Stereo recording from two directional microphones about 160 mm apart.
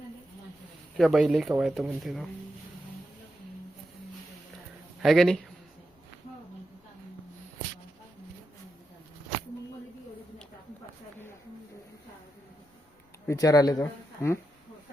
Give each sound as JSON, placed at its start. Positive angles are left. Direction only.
{"t": 0.9, "sound": "speech", "side_deg": 0}
{"t": 5.0, "sound": "speech", "side_deg": 5}
{"t": 13.2, "sound": "speech", "side_deg": 20}